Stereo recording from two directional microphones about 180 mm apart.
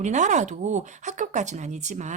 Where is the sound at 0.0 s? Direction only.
40° right (ahead or behind).